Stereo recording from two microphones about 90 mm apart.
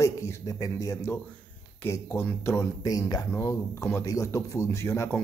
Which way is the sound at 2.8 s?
45° left (ahead or behind).